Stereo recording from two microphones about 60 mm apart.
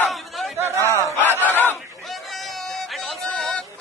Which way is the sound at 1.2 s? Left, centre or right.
Left.